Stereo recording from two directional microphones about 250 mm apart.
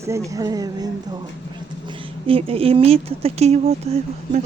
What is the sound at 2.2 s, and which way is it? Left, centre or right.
Speech, right.